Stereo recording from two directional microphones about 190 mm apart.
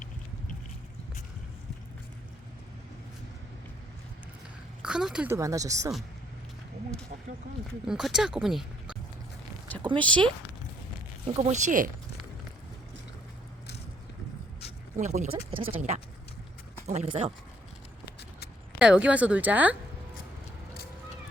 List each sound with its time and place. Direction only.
4.8 s speech: 5° right (ahead or behind)
7.9 s speech: 5° right (ahead or behind)
10.0 s speech: 5° left (ahead or behind)
11.3 s speech: 30° right (ahead or behind)
14.9 s speech: 40° right (ahead or behind)
16.8 s speech: 35° right (ahead or behind)
18.0 s vehicle: 60° left (ahead or behind)
18.8 s speech: 5° right (ahead or behind)